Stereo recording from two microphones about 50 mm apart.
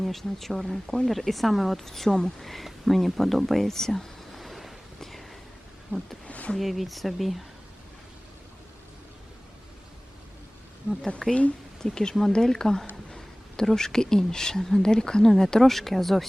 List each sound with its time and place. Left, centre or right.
0.0 s speech: centre
6.2 s a sound: left
6.6 s speech: centre
11.2 s speech: centre